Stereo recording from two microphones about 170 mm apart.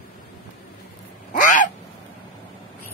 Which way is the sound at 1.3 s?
50° left (ahead or behind).